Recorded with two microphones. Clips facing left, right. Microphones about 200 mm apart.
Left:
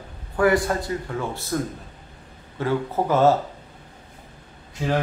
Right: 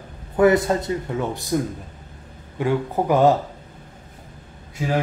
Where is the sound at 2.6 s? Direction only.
15° right (ahead or behind).